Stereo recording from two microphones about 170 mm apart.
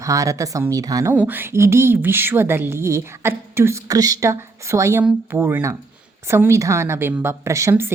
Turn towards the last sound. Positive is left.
turn(degrees=-15)  # may be behind; listen again after turning